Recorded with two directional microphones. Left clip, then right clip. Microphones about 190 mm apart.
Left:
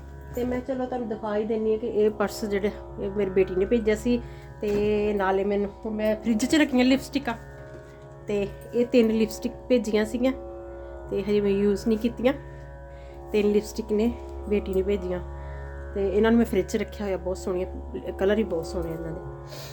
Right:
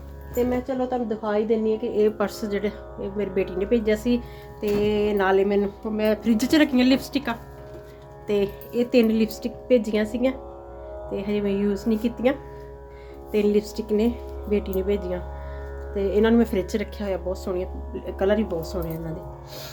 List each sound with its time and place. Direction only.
0.3 s a woman's voice: centre (ahead or behind)